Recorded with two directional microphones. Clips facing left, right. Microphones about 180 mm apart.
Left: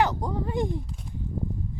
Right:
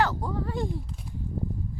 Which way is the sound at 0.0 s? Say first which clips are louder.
Left 2 dB; 20° left (ahead or behind).